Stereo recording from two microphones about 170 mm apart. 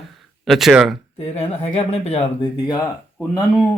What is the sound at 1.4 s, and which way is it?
Speech, 35° left (ahead or behind).